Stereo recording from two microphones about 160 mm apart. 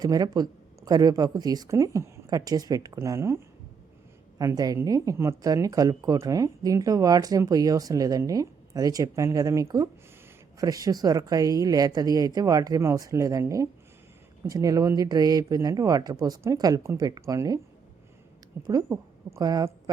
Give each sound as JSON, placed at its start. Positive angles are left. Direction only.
{"t": 0.0, "sound": "speech", "side_deg": -25}
{"t": 18.6, "sound": "speech", "side_deg": -25}